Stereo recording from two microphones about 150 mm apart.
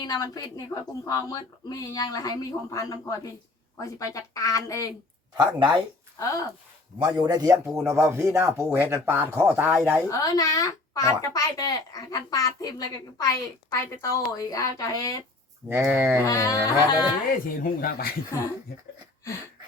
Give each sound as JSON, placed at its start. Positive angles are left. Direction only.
{"t": 0.0, "sound": "a child's voice", "side_deg": 25}
{"t": 5.4, "sound": "speech", "side_deg": -30}
{"t": 7.0, "sound": "speech", "side_deg": -30}
{"t": 10.1, "sound": "a child's voice", "side_deg": 25}
{"t": 15.7, "sound": "speech", "side_deg": -15}
{"t": 16.2, "sound": "a child's voice", "side_deg": 20}
{"t": 17.6, "sound": "speech", "side_deg": 85}